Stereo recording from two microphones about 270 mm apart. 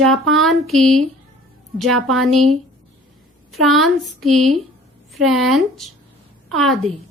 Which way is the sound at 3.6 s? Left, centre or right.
Centre.